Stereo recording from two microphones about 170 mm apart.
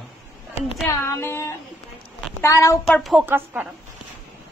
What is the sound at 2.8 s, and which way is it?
Speech, centre (ahead or behind).